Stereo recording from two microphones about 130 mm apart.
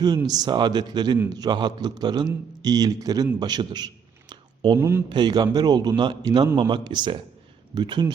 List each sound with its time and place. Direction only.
0.0 s a man's voice: 30° right (ahead or behind)
3.4 s a sound: 35° right (ahead or behind)
4.8 s speech: 15° right (ahead or behind)
5.0 s a man's voice: 35° right (ahead or behind)